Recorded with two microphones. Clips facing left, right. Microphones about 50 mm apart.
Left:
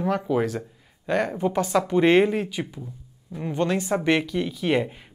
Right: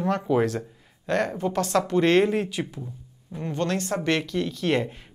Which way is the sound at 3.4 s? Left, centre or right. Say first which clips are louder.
Left 2 dB; centre.